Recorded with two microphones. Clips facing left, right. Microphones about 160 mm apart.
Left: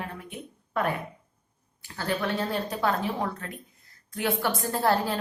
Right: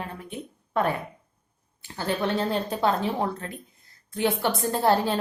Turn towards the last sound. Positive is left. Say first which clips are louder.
# right 3 dB
turn(degrees=-25)  # may be behind; listen again after turning